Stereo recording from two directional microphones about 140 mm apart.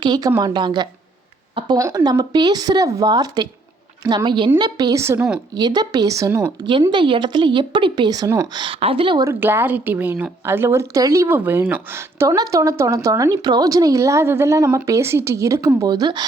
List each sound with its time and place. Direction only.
0.0 s a woman's voice: 30° right (ahead or behind)
6.9 s a woman's voice: 35° right (ahead or behind)
8.6 s a woman's voice: 40° right (ahead or behind)
9.2 s a woman's voice: 15° right (ahead or behind)